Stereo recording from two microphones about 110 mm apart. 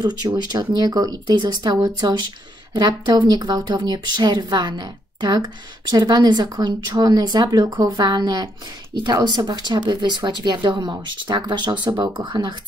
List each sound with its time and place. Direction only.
0.0 s speech: 40° right (ahead or behind)